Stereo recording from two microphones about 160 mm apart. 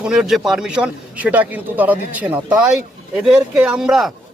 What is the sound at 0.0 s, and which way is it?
Speech, 5° right (ahead or behind).